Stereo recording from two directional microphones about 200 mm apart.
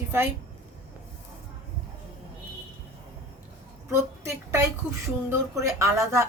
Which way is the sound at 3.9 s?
15° right (ahead or behind).